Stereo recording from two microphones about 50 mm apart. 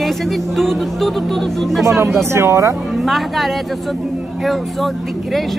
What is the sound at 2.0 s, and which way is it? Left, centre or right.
Speech, right.